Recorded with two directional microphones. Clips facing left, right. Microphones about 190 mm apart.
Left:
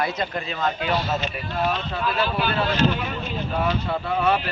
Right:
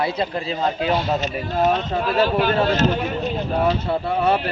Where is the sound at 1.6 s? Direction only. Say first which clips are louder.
Right 5 dB; 40° right (ahead or behind).